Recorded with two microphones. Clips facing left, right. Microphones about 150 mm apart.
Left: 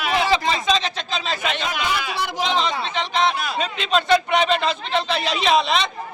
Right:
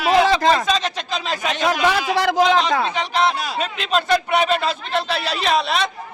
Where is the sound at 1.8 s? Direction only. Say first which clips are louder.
Right 7 dB; 90° right.